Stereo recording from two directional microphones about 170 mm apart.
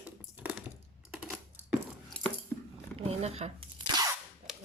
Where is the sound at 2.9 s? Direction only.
35° right (ahead or behind).